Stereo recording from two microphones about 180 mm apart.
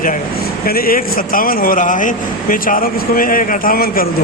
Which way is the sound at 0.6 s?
55° left (ahead or behind).